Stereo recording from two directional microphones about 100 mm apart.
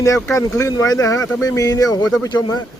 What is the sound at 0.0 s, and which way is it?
Speech, 30° left (ahead or behind).